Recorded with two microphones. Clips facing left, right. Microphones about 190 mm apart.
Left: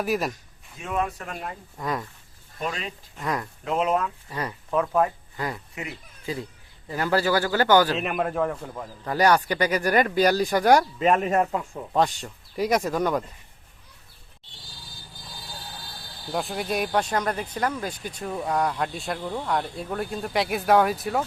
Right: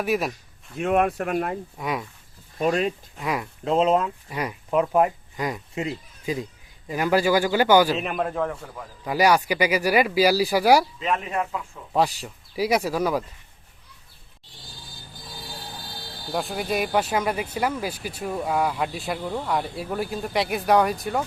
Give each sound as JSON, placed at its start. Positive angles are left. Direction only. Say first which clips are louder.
{"t": 0.0, "sound": "speech", "louder": "right 1 dB", "side_deg": 0}
{"t": 0.8, "sound": "speech", "louder": "right 7 dB", "side_deg": -65}
{"t": 1.8, "sound": "speech", "louder": "left 1 dB", "side_deg": 0}
{"t": 2.6, "sound": "speech", "louder": "right 9 dB", "side_deg": -45}
{"t": 3.2, "sound": "speech", "louder": "left 2 dB", "side_deg": -5}
{"t": 3.6, "sound": "speech", "louder": "right 5 dB", "side_deg": -30}
{"t": 4.3, "sound": "a man's voice", "louder": "right 2 dB", "side_deg": -10}
{"t": 8.1, "sound": "speech", "louder": "left 1 dB", "side_deg": 5}
{"t": 9.0, "sound": "speech", "louder": "right 1 dB", "side_deg": -10}
{"t": 11.0, "sound": "speech", "louder": "left 5 dB", "side_deg": 50}
{"t": 11.9, "sound": "speech", "louder": "right 1 dB", "side_deg": -5}
{"t": 16.3, "sound": "speech", "louder": "right 1 dB", "side_deg": 0}